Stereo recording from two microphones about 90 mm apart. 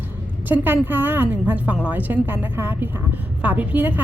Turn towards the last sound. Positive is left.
turn(degrees=-20)  # may be behind; listen again after turning